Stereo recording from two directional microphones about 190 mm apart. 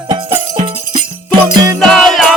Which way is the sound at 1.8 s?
Centre (ahead or behind).